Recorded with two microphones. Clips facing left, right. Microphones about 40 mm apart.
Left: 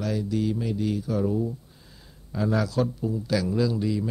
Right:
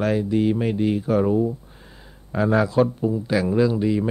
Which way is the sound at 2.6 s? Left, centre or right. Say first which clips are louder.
Right 7 dB; right.